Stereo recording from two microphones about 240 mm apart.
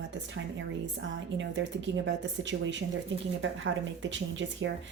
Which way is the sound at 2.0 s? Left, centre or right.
Right.